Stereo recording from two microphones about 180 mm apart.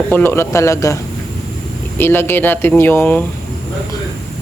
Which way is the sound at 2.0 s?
10° left (ahead or behind).